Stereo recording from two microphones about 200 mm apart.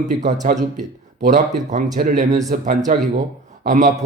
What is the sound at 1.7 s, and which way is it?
A man's voice, 45° right (ahead or behind).